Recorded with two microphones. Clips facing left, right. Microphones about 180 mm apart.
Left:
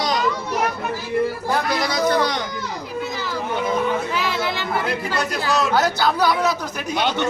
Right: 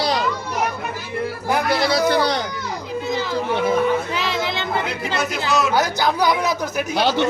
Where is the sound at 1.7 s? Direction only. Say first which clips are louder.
Right 3 dB; 30° right (ahead or behind).